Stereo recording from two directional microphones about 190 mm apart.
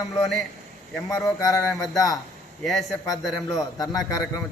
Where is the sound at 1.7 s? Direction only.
Centre (ahead or behind).